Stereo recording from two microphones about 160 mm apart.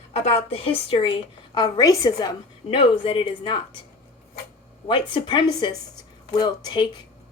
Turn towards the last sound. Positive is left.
turn(degrees=30)  # may be behind; listen again after turning